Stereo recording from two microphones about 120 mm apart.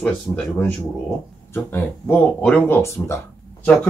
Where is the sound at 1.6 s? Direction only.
20° left (ahead or behind).